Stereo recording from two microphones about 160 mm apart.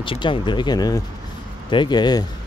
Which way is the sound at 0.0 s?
30° left (ahead or behind).